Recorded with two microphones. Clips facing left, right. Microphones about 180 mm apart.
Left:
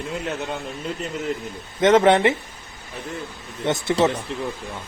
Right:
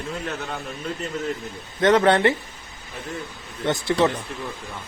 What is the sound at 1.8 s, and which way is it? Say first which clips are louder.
Speech: left 2 dB; 20° left (ahead or behind).